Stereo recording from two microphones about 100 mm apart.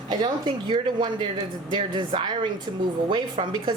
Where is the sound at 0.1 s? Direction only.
50° right (ahead or behind).